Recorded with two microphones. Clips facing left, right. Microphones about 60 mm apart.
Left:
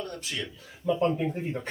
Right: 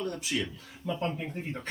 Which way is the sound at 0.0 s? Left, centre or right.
Centre.